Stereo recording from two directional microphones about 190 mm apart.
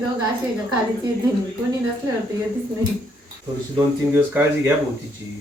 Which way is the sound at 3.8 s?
10° right (ahead or behind).